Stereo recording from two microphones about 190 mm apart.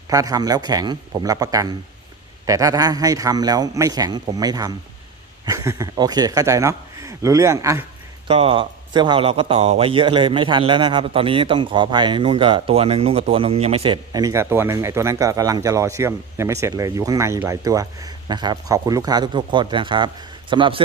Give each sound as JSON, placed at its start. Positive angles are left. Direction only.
{"t": 0.1, "sound": "speech", "side_deg": -20}
{"t": 8.3, "sound": "speech", "side_deg": -30}